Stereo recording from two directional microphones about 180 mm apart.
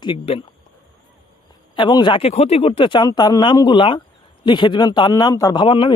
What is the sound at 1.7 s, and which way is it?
Speech, 25° left (ahead or behind).